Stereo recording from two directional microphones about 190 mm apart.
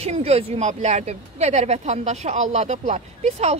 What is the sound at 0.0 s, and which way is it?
Speech, 35° right (ahead or behind).